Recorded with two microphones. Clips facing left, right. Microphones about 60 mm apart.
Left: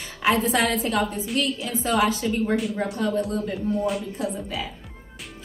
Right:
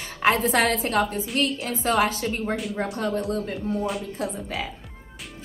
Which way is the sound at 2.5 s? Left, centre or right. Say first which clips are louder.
Left 3 dB; centre.